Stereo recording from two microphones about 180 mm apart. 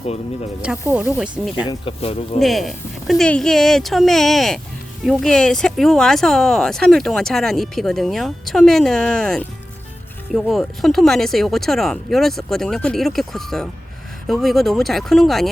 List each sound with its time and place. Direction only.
0.9 s speech: 5° right (ahead or behind)
1.6 s speech: 30° left (ahead or behind)
2.4 s speech: centre (ahead or behind)